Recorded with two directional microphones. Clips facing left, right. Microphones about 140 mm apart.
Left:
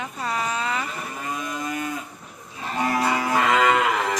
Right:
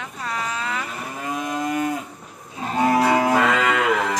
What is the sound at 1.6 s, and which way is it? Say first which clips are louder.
Cattle: right 8 dB; 70° right (ahead or behind).